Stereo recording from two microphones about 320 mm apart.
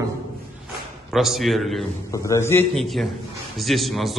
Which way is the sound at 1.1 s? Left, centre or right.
Centre.